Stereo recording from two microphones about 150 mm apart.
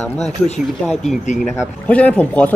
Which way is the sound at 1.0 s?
50° left (ahead or behind).